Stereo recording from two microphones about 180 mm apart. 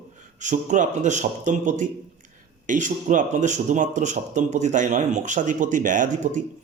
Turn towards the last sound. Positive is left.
turn(degrees=-45)  # may be behind; listen again after turning